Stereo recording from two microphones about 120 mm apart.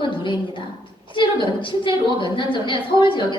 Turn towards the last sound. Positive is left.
turn(degrees=40)  # may be behind; listen again after turning